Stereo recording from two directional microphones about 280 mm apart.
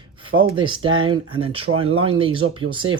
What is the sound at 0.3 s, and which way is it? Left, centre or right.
Speech, centre.